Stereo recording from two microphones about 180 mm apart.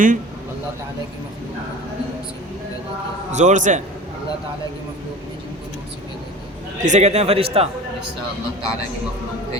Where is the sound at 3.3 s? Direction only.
40° right (ahead or behind).